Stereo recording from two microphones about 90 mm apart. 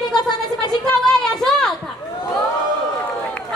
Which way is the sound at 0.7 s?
5° left (ahead or behind).